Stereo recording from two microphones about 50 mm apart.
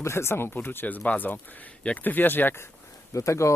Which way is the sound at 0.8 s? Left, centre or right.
Left.